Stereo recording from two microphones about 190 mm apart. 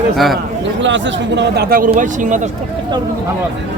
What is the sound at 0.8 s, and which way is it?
Speech, 70° right (ahead or behind).